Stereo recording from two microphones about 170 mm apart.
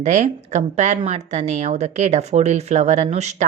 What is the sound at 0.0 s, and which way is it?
A woman's voice, 45° right (ahead or behind).